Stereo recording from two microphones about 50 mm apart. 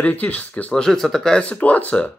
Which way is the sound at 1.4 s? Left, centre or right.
Left.